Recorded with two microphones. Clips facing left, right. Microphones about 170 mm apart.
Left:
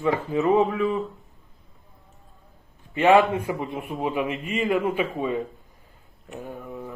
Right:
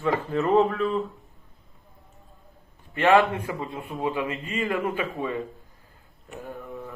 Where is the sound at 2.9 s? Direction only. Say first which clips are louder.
Left 2 dB; 15° left (ahead or behind).